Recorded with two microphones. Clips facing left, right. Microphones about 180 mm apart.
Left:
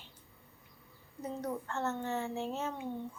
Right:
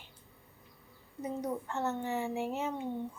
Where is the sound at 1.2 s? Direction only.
10° right (ahead or behind).